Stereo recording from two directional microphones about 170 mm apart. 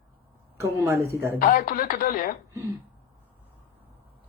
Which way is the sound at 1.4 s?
60° left (ahead or behind).